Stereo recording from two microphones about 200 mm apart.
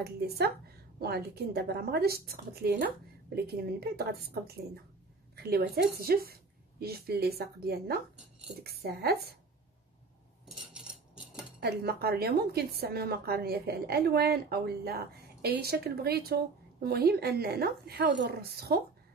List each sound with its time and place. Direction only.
0.9 s a woman's voice: 50° right (ahead or behind)
10.7 s cutlery: 5° right (ahead or behind)
11.6 s a woman's voice: 50° right (ahead or behind)